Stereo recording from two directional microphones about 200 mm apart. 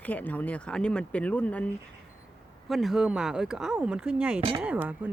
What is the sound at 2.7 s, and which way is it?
Speech, centre (ahead or behind).